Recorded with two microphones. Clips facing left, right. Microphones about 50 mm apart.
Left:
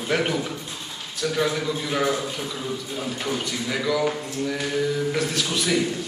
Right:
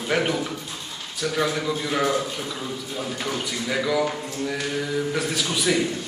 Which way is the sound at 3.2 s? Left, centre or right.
Centre.